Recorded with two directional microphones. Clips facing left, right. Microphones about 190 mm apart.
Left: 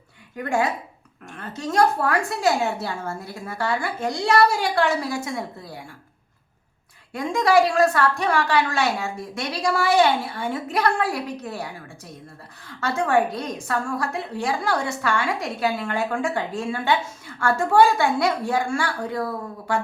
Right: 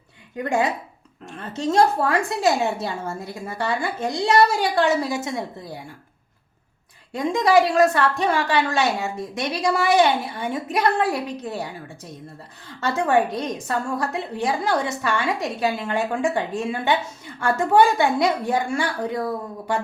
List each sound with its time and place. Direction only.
0.3 s a woman's voice: 20° right (ahead or behind)
7.1 s a woman's voice: 20° right (ahead or behind)
12.6 s a woman's voice: 20° right (ahead or behind)